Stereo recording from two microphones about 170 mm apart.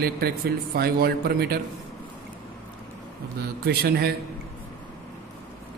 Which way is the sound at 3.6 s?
70° right (ahead or behind).